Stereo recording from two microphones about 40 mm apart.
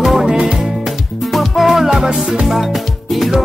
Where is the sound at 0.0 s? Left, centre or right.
Centre.